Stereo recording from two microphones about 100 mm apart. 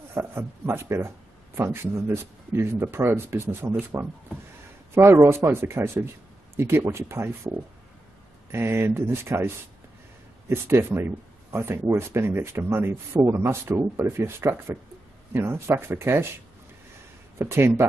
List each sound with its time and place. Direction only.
0.1 s speech: 25° right (ahead or behind)
10.5 s speech: 25° right (ahead or behind)
17.4 s speech: 25° right (ahead or behind)